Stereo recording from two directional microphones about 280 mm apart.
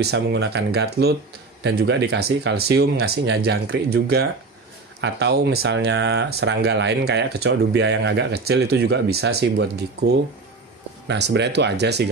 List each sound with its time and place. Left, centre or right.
0.0 s speech: right